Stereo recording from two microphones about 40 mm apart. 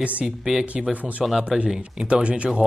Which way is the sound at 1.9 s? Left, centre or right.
Right.